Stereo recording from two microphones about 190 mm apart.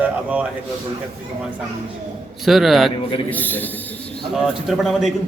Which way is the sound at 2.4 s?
Centre (ahead or behind).